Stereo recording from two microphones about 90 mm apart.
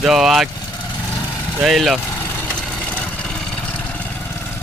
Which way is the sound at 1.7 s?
Centre (ahead or behind).